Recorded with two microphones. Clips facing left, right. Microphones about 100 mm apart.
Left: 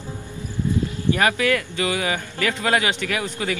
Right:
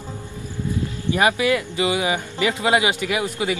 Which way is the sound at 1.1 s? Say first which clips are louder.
Right 2 dB; 15° right (ahead or behind).